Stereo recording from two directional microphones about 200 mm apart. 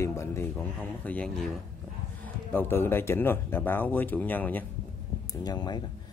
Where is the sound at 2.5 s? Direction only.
10° left (ahead or behind).